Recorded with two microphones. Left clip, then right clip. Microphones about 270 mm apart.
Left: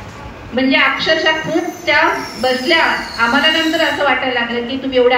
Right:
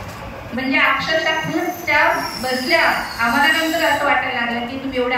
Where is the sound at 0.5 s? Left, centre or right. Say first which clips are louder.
Left 3 dB; left.